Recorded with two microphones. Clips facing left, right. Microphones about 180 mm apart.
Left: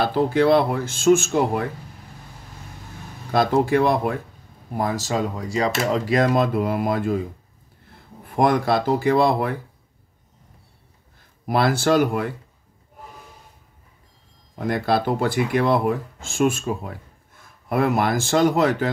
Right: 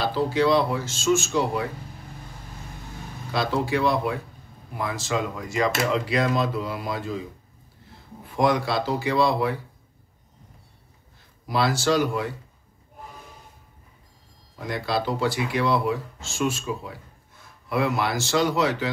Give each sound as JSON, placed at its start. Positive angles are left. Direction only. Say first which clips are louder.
{"t": 0.0, "sound": "speech", "louder": "left 4 dB", "side_deg": 55}
{"t": 3.3, "sound": "speech", "louder": "left 6 dB", "side_deg": 50}
{"t": 11.4, "sound": "speech", "louder": "left 3 dB", "side_deg": 55}
{"t": 14.5, "sound": "speech", "louder": "left 6 dB", "side_deg": 50}